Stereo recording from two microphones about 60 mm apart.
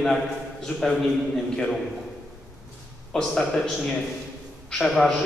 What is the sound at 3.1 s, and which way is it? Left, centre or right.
A man's voice, centre.